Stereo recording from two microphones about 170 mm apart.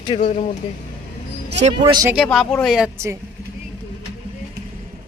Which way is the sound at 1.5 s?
45° right (ahead or behind).